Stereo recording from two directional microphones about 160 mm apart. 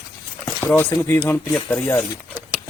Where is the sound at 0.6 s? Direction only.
10° left (ahead or behind).